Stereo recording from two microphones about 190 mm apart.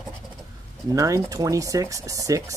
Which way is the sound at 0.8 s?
15° right (ahead or behind).